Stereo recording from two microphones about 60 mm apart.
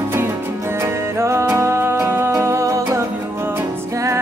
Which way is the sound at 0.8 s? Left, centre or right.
Right.